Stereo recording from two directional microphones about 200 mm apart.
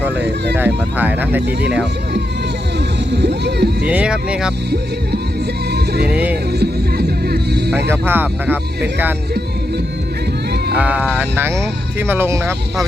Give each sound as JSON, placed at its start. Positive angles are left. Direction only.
{"t": 0.2, "sound": "speech", "side_deg": -60}
{"t": 0.6, "sound": "speech", "side_deg": -10}
{"t": 1.4, "sound": "speech", "side_deg": -55}
{"t": 3.1, "sound": "speech", "side_deg": -60}
{"t": 3.8, "sound": "speech", "side_deg": -5}
{"t": 5.7, "sound": "music", "side_deg": -55}
{"t": 6.1, "sound": "speech", "side_deg": -5}
{"t": 6.5, "sound": "music", "side_deg": -55}
{"t": 7.9, "sound": "speech", "side_deg": -10}
{"t": 10.8, "sound": "speech", "side_deg": -5}